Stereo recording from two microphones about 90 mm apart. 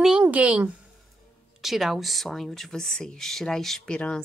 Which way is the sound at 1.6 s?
Centre (ahead or behind).